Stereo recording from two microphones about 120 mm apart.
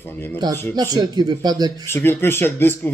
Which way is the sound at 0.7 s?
35° right (ahead or behind).